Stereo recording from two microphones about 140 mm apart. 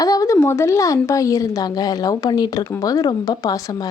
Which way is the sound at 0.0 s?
25° left (ahead or behind).